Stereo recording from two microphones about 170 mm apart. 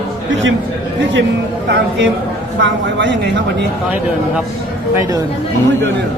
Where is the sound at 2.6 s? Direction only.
90° right.